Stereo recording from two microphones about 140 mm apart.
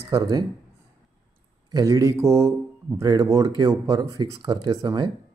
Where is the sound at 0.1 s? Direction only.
25° right (ahead or behind).